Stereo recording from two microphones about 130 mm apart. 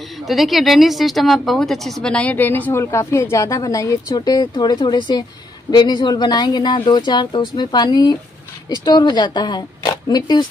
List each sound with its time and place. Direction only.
0.3 s a woman's voice: centre (ahead or behind); by 10.4 s 30° left (ahead or behind)